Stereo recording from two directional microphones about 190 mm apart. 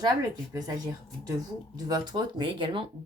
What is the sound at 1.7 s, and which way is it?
A woman's voice, 20° right (ahead or behind).